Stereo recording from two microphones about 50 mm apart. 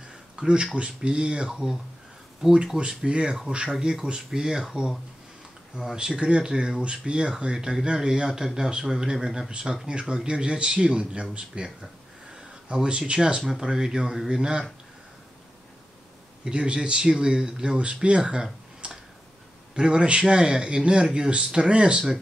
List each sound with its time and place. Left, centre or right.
0.4 s speech: centre
2.8 s speech: centre
5.8 s speech: centre
9.5 s speech: centre
16.4 s speech: centre